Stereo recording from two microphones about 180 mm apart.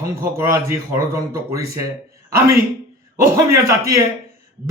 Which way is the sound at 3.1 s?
15° right (ahead or behind).